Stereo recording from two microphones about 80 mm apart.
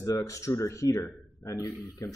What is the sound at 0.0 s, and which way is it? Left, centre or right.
A man's voice, left.